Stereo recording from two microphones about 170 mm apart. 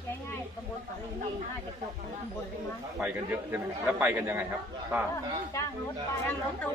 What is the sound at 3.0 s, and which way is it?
A man's voice, 10° right (ahead or behind).